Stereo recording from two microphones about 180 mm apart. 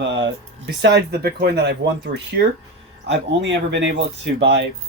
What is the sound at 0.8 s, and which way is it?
Speech, 65° right (ahead or behind).